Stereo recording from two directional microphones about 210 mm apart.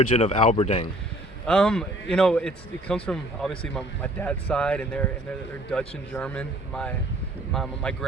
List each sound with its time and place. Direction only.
0.2 s speech: 30° left (ahead or behind)
1.5 s a man's voice: 5° left (ahead or behind)